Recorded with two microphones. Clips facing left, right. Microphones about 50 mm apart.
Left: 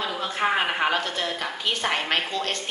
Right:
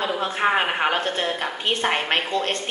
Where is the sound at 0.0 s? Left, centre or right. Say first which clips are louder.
Right 3 dB; right.